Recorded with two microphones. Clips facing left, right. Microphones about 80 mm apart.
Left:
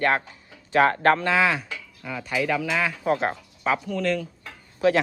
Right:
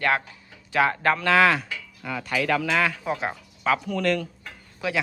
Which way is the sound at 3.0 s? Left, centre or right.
Left.